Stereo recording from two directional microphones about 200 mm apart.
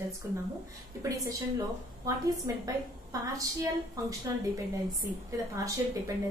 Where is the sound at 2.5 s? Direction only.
15° right (ahead or behind).